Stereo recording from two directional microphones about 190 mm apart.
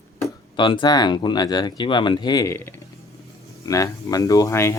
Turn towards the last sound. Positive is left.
turn(degrees=15)  # may be behind; listen again after turning